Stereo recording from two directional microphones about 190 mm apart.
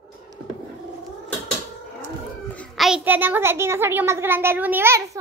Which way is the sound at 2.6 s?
Centre (ahead or behind).